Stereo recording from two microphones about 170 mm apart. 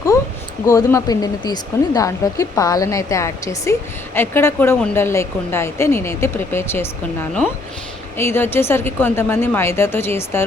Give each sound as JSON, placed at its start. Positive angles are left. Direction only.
{"t": 0.7, "sound": "speech", "side_deg": 20}
{"t": 8.2, "sound": "speech", "side_deg": 15}